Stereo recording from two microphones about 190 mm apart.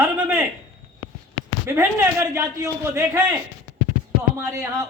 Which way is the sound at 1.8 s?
15° right (ahead or behind).